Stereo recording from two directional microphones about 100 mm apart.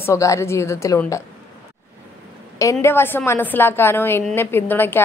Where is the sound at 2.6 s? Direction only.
35° left (ahead or behind).